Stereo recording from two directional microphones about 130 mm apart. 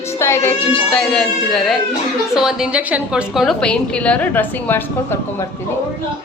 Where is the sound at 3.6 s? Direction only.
10° left (ahead or behind).